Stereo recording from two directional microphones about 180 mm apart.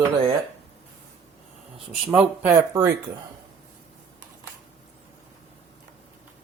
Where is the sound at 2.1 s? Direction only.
10° right (ahead or behind).